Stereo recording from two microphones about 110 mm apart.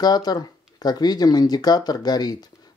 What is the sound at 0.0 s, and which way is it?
Speech, 40° left (ahead or behind).